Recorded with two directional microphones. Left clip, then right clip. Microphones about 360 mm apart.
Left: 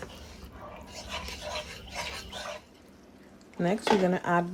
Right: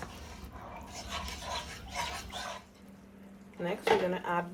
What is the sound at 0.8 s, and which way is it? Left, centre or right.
Dog, centre.